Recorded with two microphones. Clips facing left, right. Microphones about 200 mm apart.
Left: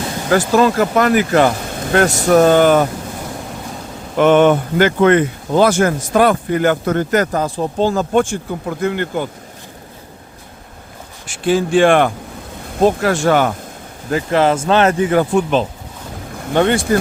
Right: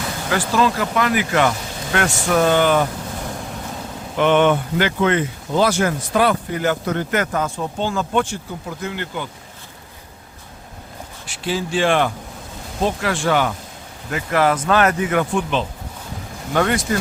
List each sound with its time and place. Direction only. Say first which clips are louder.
0.3 s speech: left 6 dB; 45° left (ahead or behind)
4.2 s speech: left 5 dB; 40° left (ahead or behind)
11.3 s speech: left 8 dB; 50° left (ahead or behind)
12.8 s speech: left 7 dB; 45° left (ahead or behind)
14.1 s speech: left 4 dB; 30° left (ahead or behind)
16.6 s speech: left 5 dB; 30° left (ahead or behind)